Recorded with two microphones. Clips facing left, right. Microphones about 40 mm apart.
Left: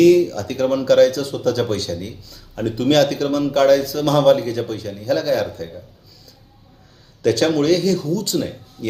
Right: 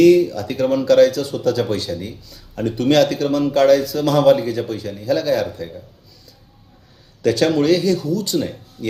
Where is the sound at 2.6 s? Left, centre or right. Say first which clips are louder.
Right 1 dB; centre.